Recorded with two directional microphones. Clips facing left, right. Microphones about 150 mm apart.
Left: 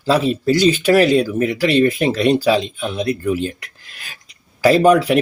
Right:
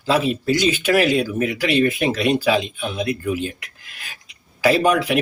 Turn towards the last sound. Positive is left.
turn(degrees=40)  # may be behind; listen again after turning